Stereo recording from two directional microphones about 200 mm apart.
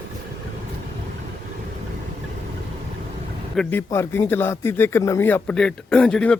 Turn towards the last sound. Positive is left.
turn(degrees=5)  # may be behind; listen again after turning